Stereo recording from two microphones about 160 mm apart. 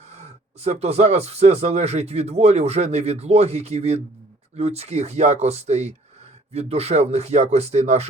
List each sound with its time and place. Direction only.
0.1 s speech: 40° right (ahead or behind)